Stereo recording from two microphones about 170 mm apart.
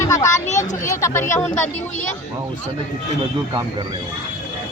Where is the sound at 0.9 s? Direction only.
15° left (ahead or behind).